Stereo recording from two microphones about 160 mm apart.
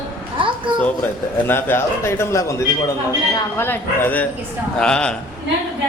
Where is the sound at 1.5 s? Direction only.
15° left (ahead or behind).